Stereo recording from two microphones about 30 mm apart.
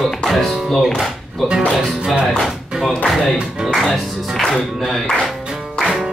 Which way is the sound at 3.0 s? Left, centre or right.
Centre.